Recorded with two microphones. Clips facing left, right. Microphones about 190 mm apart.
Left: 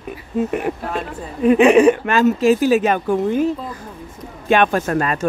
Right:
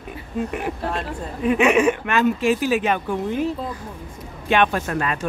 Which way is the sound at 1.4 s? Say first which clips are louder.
Left 6 dB; 40° left (ahead or behind).